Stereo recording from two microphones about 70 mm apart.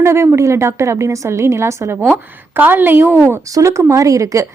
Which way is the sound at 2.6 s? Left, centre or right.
Right.